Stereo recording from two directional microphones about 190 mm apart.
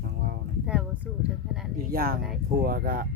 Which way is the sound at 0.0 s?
55° right (ahead or behind).